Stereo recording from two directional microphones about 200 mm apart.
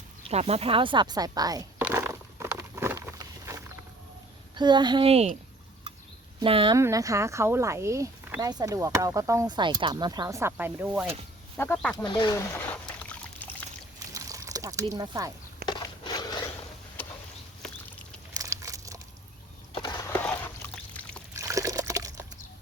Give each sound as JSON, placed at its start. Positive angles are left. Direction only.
{"t": 0.3, "sound": "speech", "side_deg": -30}
{"t": 1.8, "sound": "a sound", "side_deg": -15}
{"t": 4.5, "sound": "speech", "side_deg": -20}
{"t": 6.4, "sound": "speech", "side_deg": -25}
{"t": 6.7, "sound": "speech", "side_deg": -15}
{"t": 11.5, "sound": "speech", "side_deg": 10}
{"t": 12.0, "sound": "trickle", "side_deg": 25}
{"t": 14.1, "sound": "a sound", "side_deg": -15}
{"t": 15.6, "sound": "a sound", "side_deg": 20}
{"t": 18.3, "sound": "crumpling", "side_deg": -15}
{"t": 19.7, "sound": "skateboard", "side_deg": 20}
{"t": 21.3, "sound": "liquid", "side_deg": -15}